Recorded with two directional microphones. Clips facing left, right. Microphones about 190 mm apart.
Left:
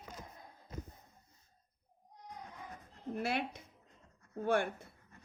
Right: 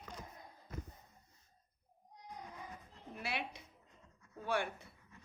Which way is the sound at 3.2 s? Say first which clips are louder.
Left 6 dB; 50° left (ahead or behind).